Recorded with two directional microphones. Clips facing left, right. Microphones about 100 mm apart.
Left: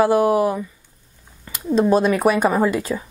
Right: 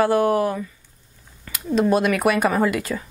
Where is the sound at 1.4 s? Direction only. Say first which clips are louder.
Left 2 dB; 10° left (ahead or behind).